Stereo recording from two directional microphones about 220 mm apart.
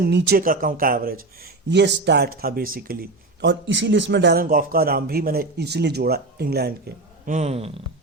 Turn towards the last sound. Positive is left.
turn(degrees=-30)  # may be behind; listen again after turning